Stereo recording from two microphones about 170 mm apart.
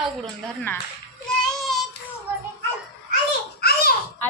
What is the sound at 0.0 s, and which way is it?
Speech, centre (ahead or behind).